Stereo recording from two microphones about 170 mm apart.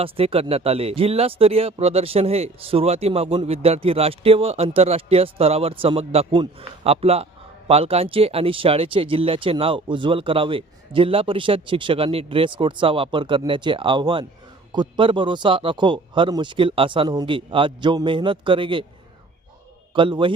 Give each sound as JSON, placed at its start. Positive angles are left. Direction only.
{"t": 0.0, "sound": "speech", "side_deg": -35}
{"t": 19.9, "sound": "a man's voice", "side_deg": -30}